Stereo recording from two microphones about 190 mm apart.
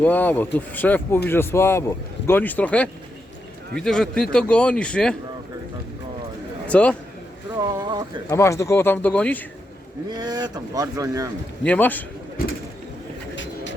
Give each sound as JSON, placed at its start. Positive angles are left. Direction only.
{"t": 0.0, "sound": "a man's voice", "side_deg": 10}
{"t": 6.7, "sound": "a man's voice", "side_deg": 5}
{"t": 7.6, "sound": "speech", "side_deg": -20}
{"t": 8.3, "sound": "speech", "side_deg": 15}
{"t": 10.1, "sound": "speech", "side_deg": -20}
{"t": 11.6, "sound": "speech", "side_deg": 10}
{"t": 13.3, "sound": "pigeon", "side_deg": 75}